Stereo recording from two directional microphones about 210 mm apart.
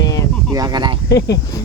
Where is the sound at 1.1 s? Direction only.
55° left (ahead or behind).